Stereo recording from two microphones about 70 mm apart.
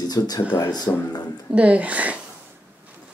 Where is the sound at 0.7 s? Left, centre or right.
Left.